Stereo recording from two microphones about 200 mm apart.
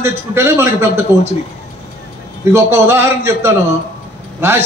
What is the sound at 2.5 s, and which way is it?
A man's voice, 10° right (ahead or behind).